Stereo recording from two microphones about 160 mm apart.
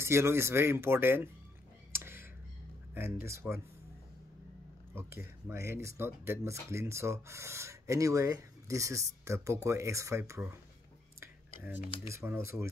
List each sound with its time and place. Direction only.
0.0 s speech: 15° right (ahead or behind)
1.9 s a sound: 15° right (ahead or behind)
3.3 s speech: 15° right (ahead or behind)
5.8 s speech: 15° right (ahead or behind)
11.1 s whispering: 10° right (ahead or behind)
12.1 s speech: 15° right (ahead or behind)